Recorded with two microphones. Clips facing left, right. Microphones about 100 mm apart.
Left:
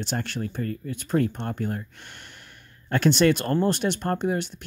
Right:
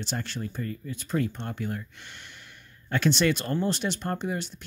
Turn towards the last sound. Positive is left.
turn(degrees=55)  # may be behind; listen again after turning